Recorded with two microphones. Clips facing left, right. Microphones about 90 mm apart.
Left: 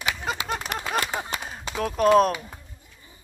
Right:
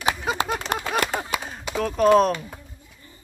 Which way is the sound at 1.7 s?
5° left (ahead or behind).